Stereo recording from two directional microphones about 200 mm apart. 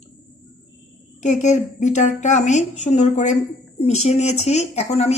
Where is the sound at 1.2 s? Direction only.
35° left (ahead or behind).